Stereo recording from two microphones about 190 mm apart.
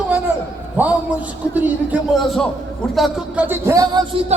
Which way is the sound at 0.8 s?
10° right (ahead or behind).